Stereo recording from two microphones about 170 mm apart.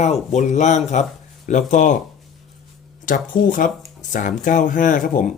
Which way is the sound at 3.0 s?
55° left (ahead or behind).